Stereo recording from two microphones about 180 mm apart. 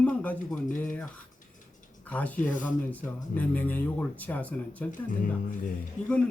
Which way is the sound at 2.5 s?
45° left (ahead or behind).